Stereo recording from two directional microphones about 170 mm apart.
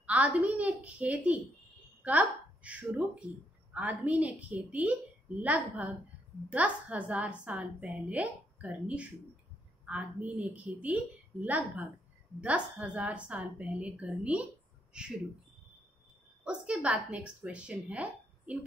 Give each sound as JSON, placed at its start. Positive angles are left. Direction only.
{"t": 0.0, "sound": "a woman's voice", "side_deg": -10}
{"t": 16.4, "sound": "a woman's voice", "side_deg": -5}